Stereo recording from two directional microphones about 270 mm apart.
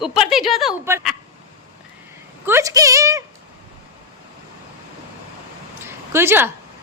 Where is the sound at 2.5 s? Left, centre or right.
Centre.